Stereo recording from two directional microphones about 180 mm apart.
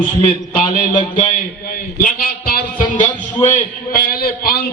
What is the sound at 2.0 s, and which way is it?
Speech, 55° left (ahead or behind).